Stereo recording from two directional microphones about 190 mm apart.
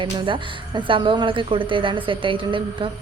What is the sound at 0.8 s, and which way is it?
A woman's voice, 25° right (ahead or behind).